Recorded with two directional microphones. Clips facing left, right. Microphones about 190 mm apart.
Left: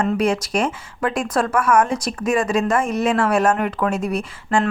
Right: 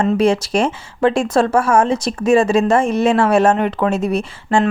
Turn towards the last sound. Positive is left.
turn(degrees=-25)  # may be behind; listen again after turning